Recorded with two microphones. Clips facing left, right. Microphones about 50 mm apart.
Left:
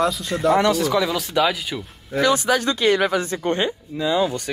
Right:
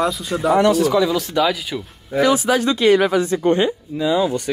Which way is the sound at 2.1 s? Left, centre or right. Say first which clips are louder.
Right 3 dB; centre.